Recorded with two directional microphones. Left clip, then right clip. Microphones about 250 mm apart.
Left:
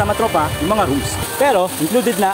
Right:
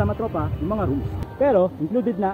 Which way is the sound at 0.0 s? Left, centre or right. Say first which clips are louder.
Left 9 dB; centre.